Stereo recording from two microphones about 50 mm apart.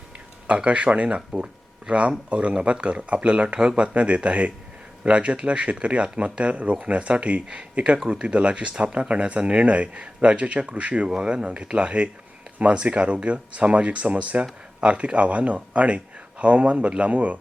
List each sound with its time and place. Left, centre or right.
0.4 s speech: right